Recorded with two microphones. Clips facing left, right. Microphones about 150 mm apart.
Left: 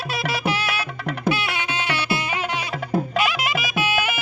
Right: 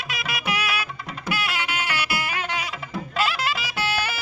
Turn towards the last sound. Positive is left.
turn(degrees=20)  # may be behind; listen again after turning